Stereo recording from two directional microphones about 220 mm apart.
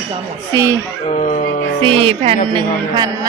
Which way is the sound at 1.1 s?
35° left (ahead or behind).